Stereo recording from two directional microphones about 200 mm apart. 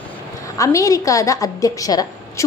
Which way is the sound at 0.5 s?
15° left (ahead or behind).